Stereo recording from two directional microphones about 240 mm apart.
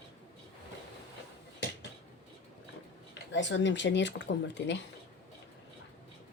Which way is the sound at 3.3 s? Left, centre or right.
Left.